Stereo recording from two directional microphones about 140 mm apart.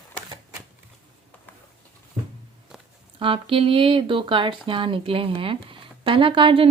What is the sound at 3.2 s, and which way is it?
Speech, 40° right (ahead or behind).